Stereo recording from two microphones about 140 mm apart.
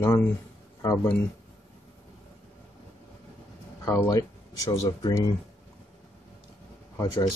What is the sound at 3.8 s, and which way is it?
Speech, 20° left (ahead or behind).